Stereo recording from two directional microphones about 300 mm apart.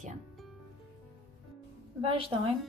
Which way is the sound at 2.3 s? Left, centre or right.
Centre.